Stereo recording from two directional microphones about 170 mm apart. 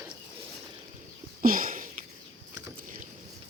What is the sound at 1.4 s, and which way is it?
Sniff, 55° right (ahead or behind).